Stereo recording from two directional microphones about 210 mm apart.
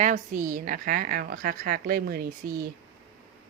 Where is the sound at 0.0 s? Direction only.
40° right (ahead or behind).